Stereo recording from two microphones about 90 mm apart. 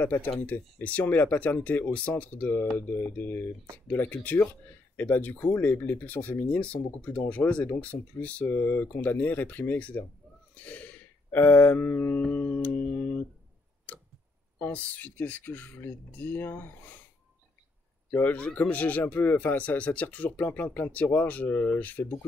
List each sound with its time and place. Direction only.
0.0 s speech: 20° left (ahead or behind)
10.5 s a sound: 15° left (ahead or behind)
12.2 s music: 15° left (ahead or behind)
14.6 s speech: 15° left (ahead or behind)
18.1 s speech: 20° left (ahead or behind)